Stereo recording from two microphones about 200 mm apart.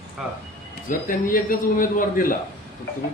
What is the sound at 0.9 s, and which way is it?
A man's voice, 45° left (ahead or behind).